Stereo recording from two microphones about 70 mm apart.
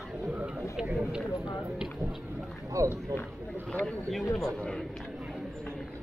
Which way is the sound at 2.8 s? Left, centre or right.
Right.